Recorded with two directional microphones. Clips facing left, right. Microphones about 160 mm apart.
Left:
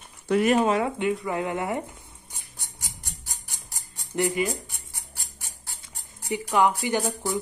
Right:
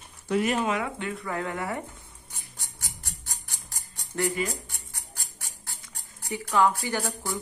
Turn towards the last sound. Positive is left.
turn(degrees=20)  # may be behind; listen again after turning